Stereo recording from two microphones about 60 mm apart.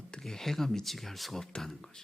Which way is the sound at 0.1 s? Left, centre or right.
Centre.